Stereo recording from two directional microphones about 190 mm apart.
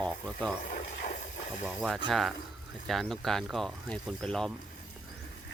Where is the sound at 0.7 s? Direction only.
40° left (ahead or behind).